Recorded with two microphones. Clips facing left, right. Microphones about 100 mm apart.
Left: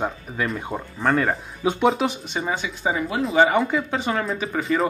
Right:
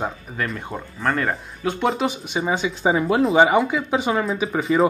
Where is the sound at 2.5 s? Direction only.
25° right (ahead or behind).